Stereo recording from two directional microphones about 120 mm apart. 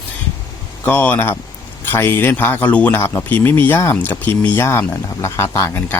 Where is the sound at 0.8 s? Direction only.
15° left (ahead or behind).